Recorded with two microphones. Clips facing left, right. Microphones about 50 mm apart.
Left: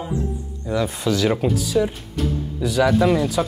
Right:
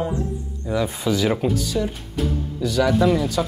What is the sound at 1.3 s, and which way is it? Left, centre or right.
Speech, centre.